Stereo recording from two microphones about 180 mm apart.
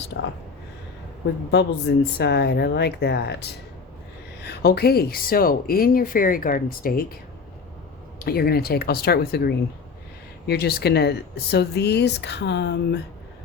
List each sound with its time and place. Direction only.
1.5 s speech: 70° left (ahead or behind); by 7.1 s 55° left (ahead or behind)
8.2 s speech: 60° left (ahead or behind)